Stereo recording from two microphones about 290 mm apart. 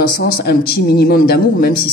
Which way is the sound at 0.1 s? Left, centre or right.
Left.